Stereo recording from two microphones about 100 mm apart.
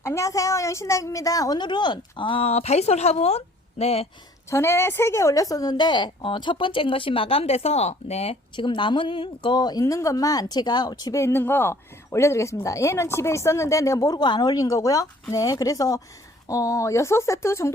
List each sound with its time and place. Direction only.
0.0 s a woman's voice: 30° left (ahead or behind); by 4.1 s 90° left
4.4 s a woman's voice: 25° left (ahead or behind); by 8.4 s 90° left
8.5 s a woman's voice: 55° left (ahead or behind)
9.8 s speech: 35° left (ahead or behind)